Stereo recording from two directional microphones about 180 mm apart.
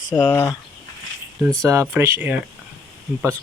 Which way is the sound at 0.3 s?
15° left (ahead or behind).